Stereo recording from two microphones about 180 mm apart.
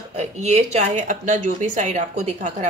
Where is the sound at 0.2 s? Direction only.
40° right (ahead or behind).